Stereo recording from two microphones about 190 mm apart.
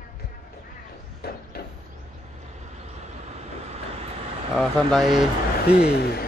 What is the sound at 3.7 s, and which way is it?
Vehicle, 35° right (ahead or behind).